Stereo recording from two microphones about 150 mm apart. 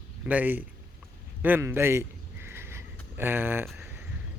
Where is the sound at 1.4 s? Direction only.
15° right (ahead or behind).